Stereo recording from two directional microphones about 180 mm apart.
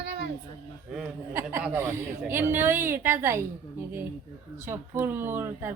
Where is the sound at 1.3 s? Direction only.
15° right (ahead or behind).